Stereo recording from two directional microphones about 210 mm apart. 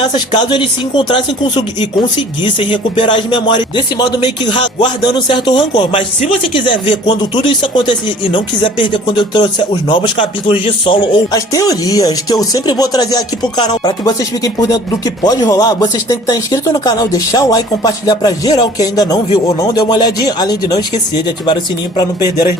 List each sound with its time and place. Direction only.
0.0 s speech: 20° left (ahead or behind)